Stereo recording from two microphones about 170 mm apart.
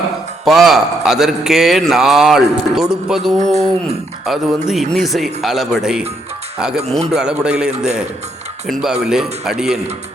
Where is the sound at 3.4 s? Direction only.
40° right (ahead or behind).